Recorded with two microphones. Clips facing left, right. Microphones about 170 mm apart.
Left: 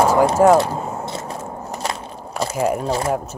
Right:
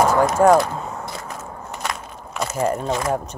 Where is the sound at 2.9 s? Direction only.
30° left (ahead or behind).